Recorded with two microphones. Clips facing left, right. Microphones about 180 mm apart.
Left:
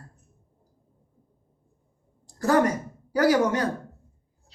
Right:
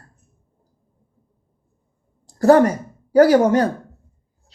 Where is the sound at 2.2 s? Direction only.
30° right (ahead or behind).